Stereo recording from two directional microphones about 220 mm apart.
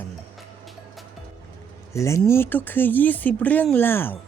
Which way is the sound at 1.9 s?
15° left (ahead or behind).